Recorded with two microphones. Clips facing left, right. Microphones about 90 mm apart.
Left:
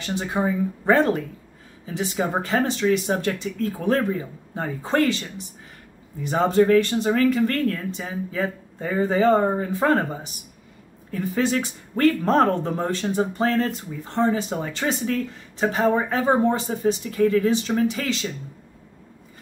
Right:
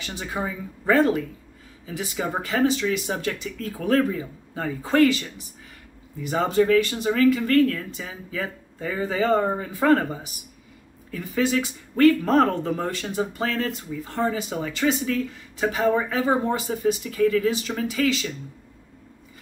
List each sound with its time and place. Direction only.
0.0 s speech: 35° left (ahead or behind)
3.6 s speech: 25° left (ahead or behind)
6.3 s speech: 30° left (ahead or behind)
14.5 s speech: 35° left (ahead or behind)